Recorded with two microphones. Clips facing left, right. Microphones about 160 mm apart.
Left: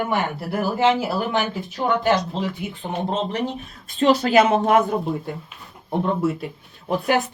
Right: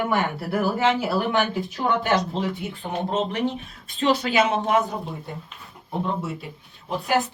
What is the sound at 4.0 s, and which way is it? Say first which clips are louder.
Speech: left 5 dB; 45° left (ahead or behind).